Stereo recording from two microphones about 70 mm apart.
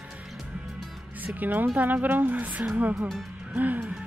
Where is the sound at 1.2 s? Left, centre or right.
Right.